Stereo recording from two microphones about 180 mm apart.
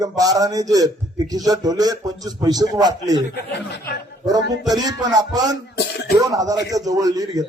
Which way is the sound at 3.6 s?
70° left (ahead or behind).